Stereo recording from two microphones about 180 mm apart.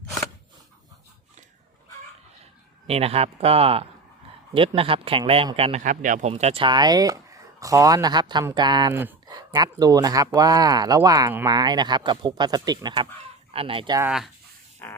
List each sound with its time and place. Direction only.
2.8 s a man's voice: 35° right (ahead or behind)
8.9 s a man's voice: 10° right (ahead or behind); by 14.0 s 25° right (ahead or behind)
14.0 s speech: 5° right (ahead or behind)
14.8 s fart: 10° left (ahead or behind)